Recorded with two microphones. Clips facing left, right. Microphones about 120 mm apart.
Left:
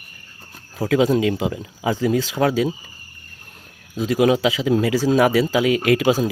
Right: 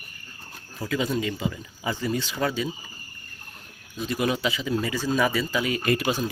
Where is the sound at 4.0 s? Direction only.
90° left.